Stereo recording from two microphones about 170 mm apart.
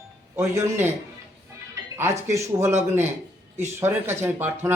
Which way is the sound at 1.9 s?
15° right (ahead or behind).